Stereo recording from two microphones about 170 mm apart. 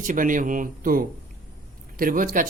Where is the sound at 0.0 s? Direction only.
50° right (ahead or behind).